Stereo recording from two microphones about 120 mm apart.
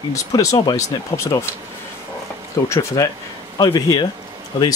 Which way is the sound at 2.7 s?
25° left (ahead or behind).